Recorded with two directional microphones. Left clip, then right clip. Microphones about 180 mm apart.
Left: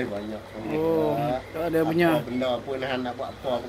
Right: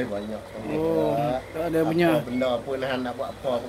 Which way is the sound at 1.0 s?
Centre (ahead or behind).